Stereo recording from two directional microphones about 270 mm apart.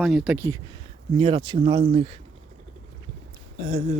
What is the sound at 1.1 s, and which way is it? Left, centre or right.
Speech, centre.